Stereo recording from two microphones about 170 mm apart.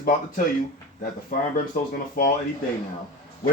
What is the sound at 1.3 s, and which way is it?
Speech, 55° left (ahead or behind).